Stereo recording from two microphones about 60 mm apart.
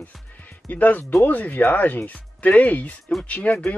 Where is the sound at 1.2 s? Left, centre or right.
Left.